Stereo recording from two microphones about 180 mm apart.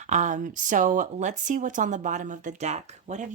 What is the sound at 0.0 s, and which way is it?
Speech, 40° right (ahead or behind).